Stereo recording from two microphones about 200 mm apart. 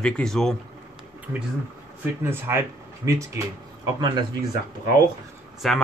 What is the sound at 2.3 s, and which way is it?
Speech, 10° right (ahead or behind).